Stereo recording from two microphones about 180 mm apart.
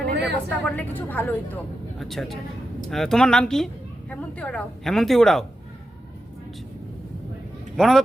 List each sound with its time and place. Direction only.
0.0 s vehicle: 65° right (ahead or behind)
0.4 s a woman's voice: 10° left (ahead or behind)
7.8 s a woman's voice: centre (ahead or behind)